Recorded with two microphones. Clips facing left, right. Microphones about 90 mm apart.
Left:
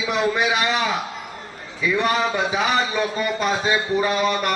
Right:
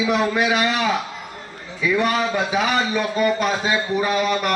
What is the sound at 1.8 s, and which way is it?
Speech, 5° right (ahead or behind).